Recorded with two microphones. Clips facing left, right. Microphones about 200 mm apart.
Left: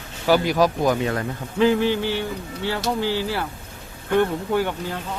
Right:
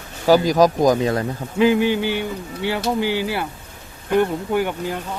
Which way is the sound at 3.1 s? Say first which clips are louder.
Right 2 dB; 60° right (ahead or behind).